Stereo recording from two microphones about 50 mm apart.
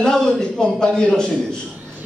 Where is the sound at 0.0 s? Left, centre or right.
Centre.